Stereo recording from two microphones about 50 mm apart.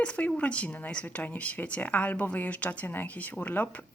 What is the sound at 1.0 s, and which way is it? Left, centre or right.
Speech, left.